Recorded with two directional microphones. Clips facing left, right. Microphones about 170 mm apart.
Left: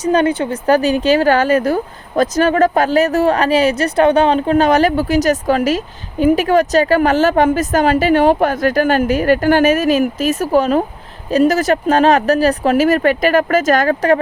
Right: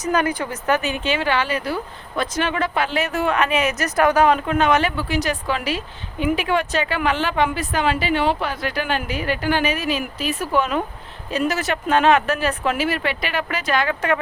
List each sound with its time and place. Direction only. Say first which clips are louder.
0.0 s speech: left 7 dB; 30° left (ahead or behind)